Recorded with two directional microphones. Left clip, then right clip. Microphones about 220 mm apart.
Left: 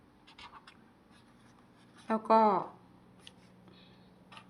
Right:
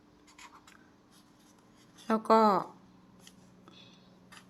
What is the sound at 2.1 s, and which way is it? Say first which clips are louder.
Speech: right 1 dB; 25° right (ahead or behind).